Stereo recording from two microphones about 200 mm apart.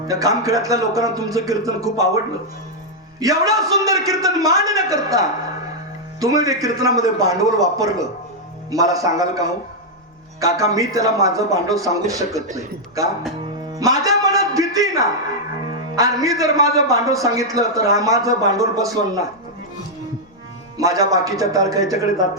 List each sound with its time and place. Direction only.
0.1 s a man's voice: 15° right (ahead or behind)
3.2 s a man's voice: 15° right (ahead or behind)
10.4 s a man's voice: 15° right (ahead or behind)
13.7 s music: 15° right (ahead or behind)
16.0 s a man's voice: 15° right (ahead or behind)
20.7 s a man's voice: 15° right (ahead or behind)